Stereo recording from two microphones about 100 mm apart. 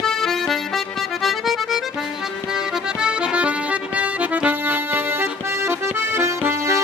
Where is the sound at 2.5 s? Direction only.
10° right (ahead or behind).